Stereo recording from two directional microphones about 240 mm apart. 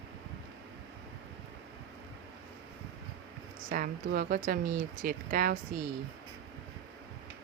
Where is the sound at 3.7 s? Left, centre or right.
Right.